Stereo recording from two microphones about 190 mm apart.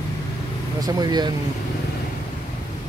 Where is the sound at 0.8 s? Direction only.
20° right (ahead or behind).